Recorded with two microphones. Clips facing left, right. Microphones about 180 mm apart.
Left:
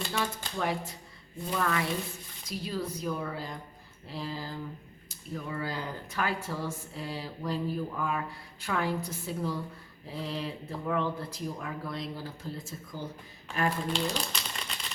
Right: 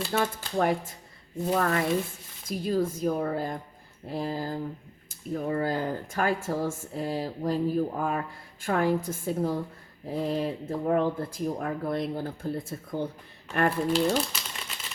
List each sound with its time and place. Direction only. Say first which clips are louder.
0.1 s speech: right 5 dB; 45° right (ahead or behind); by 13.7 s 60° right (ahead or behind)
13.9 s speech: right 7 dB; 5° right (ahead or behind)